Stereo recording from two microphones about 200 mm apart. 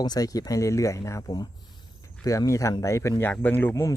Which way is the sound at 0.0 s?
20° left (ahead or behind).